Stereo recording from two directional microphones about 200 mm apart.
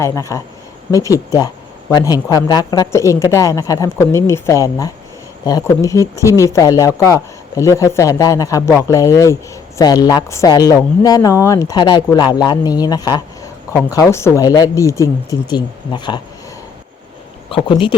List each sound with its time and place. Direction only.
0.0 s speech: 15° left (ahead or behind)
17.5 s speech: 25° left (ahead or behind)